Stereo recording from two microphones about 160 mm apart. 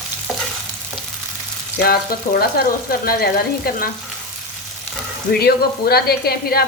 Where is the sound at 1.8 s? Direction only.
75° left (ahead or behind).